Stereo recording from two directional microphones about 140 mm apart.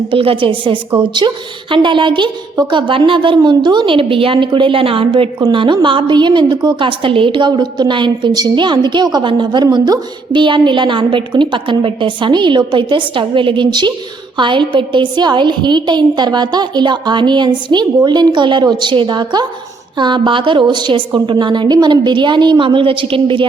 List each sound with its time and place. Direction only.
0.1 s a woman's voice: 40° right (ahead or behind)